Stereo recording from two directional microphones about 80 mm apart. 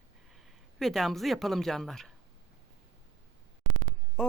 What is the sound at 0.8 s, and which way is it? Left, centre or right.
A woman's voice, centre.